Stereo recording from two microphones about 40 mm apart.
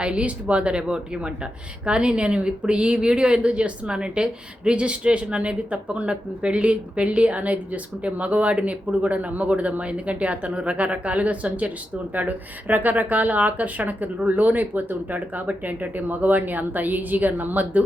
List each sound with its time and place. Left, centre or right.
0.0 s speech: right